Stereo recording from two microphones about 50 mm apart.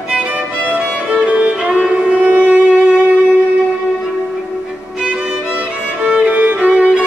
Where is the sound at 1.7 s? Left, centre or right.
Centre.